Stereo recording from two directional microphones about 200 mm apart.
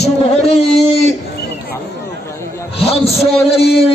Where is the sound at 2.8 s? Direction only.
30° left (ahead or behind).